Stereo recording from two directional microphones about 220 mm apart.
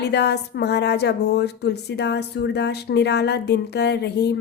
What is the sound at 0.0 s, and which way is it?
Speech, 50° left (ahead or behind).